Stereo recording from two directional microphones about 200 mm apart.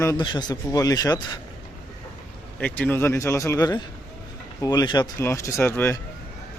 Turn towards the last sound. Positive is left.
turn(degrees=10)  # may be behind; listen again after turning